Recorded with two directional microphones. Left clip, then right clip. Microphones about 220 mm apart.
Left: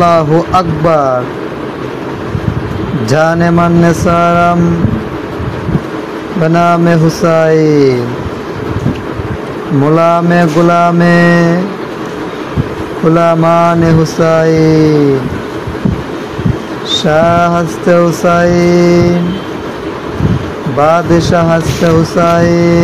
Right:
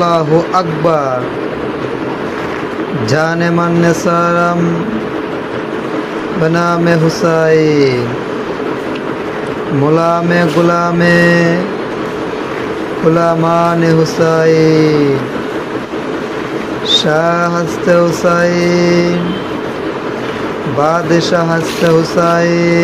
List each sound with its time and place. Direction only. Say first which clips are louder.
0.0 s mantra: left 3 dB; 45° left (ahead or behind)
3.1 s mantra: left 4 dB; 45° left (ahead or behind)
6.4 s mantra: left 4 dB; 45° left (ahead or behind)
9.9 s mantra: left 4 dB; 45° left (ahead or behind)
13.1 s mantra: left 4 dB; 45° left (ahead or behind)
16.9 s a sound: left 3 dB; 45° left (ahead or behind)
17.6 s mantra: left 1 dB; 45° left (ahead or behind)
20.9 s mantra: left 2 dB; 45° left (ahead or behind)